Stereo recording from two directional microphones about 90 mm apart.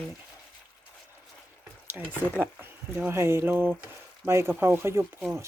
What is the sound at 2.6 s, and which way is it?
Speech, 25° right (ahead or behind).